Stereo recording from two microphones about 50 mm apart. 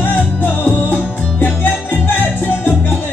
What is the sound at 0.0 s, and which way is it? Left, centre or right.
Music, left.